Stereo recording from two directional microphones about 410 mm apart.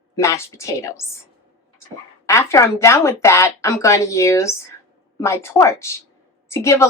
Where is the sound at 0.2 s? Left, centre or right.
Centre.